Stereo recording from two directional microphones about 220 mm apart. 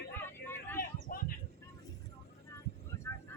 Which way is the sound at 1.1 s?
40° left (ahead or behind).